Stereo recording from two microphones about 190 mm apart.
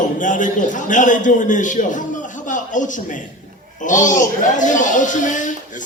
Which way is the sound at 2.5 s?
40° left (ahead or behind).